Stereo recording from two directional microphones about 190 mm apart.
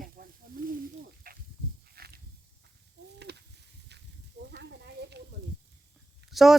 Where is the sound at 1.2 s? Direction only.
50° right (ahead or behind).